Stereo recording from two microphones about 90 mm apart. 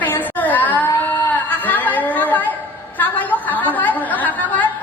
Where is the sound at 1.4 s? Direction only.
20° left (ahead or behind).